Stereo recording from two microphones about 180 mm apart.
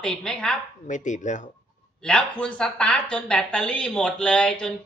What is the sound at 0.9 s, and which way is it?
Speech, 40° left (ahead or behind).